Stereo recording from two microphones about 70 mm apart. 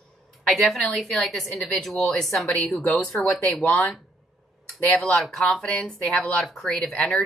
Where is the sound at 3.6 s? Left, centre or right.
Left.